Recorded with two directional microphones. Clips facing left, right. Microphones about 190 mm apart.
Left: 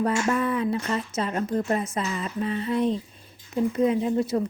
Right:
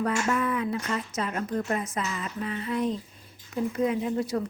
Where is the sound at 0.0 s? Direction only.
30° left (ahead or behind).